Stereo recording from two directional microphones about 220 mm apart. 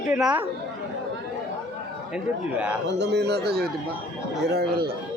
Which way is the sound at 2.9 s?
50° right (ahead or behind).